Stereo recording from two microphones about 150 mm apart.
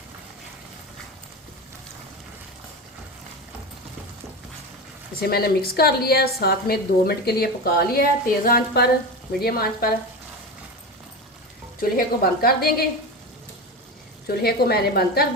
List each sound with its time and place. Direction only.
5.2 s a woman's voice: 90° left
11.8 s a woman's voice: 80° left
14.3 s a woman's voice: 90° left